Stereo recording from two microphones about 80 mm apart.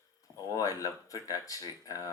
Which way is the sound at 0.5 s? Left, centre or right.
Left.